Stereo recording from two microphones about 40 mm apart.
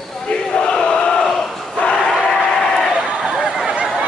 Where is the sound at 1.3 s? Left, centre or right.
Centre.